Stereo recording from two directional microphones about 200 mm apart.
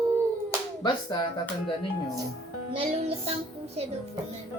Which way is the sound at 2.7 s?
30° right (ahead or behind).